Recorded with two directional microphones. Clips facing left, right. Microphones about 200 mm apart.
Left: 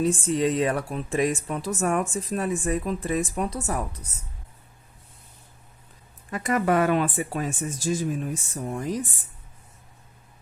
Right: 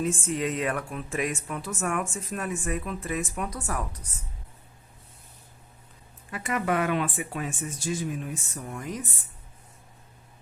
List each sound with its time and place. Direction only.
0.0 s a woman's voice: 30° left (ahead or behind)
6.3 s speech: 40° left (ahead or behind)